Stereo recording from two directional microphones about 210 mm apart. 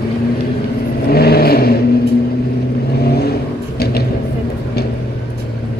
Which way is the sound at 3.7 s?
50° left (ahead or behind).